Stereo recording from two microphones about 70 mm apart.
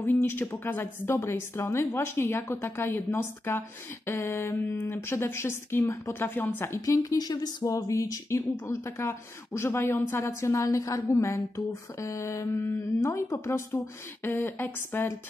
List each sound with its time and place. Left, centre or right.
0.0 s a woman's voice: left
6.1 s speech: left
6.7 s a woman's voice: left
10.2 s a woman's voice: left
14.2 s a woman's voice: left